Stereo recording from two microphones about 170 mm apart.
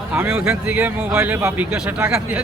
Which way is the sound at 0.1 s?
10° right (ahead or behind).